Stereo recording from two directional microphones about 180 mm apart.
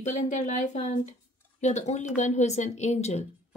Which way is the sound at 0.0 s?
40° left (ahead or behind).